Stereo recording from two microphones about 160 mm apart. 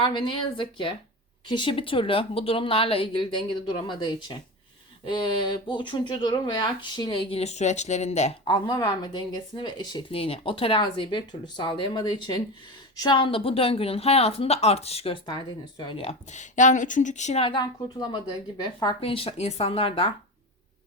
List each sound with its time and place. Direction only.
0.0 s speech: 30° left (ahead or behind)
8.4 s speech: 25° left (ahead or behind)